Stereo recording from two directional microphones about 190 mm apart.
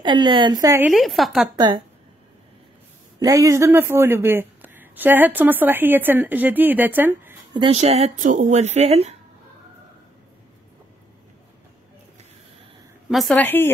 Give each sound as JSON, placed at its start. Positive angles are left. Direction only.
{"t": 0.0, "sound": "speech", "side_deg": -25}
{"t": 0.9, "sound": "a woman's voice", "side_deg": 0}
{"t": 3.2, "sound": "speech", "side_deg": -15}
{"t": 7.5, "sound": "speech", "side_deg": -30}
{"t": 13.1, "sound": "a woman's voice", "side_deg": 0}